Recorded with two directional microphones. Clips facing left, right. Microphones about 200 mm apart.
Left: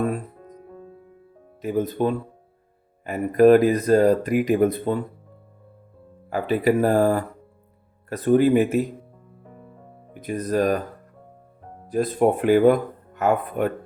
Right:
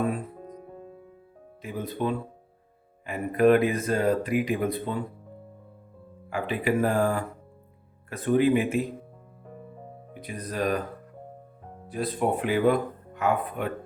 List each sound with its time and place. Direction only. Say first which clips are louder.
1.6 s speech: left 7 dB; 45° left (ahead or behind)
6.3 s speech: left 6 dB; 40° left (ahead or behind)
10.2 s speech: left 8 dB; 45° left (ahead or behind)
11.9 s speech: left 7 dB; 45° left (ahead or behind)